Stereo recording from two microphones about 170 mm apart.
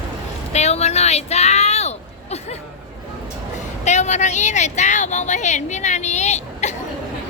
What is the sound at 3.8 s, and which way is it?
A woman's voice, 45° left (ahead or behind).